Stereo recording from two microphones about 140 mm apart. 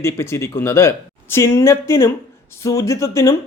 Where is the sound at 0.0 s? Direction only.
20° left (ahead or behind).